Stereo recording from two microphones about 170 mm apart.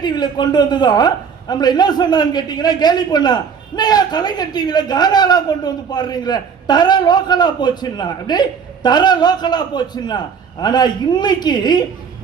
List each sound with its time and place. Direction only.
0.0 s a man's voice: 25° left (ahead or behind)